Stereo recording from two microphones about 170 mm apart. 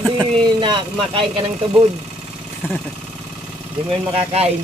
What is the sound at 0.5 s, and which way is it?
Speech, 30° right (ahead or behind).